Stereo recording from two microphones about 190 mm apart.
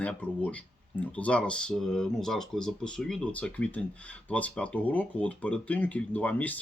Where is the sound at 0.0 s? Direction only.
5° left (ahead or behind).